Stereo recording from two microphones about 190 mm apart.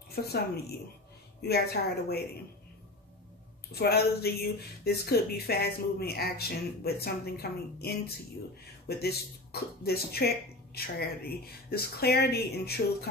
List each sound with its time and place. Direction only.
0.1 s speech: 55° left (ahead or behind)
3.7 s speech: 55° left (ahead or behind)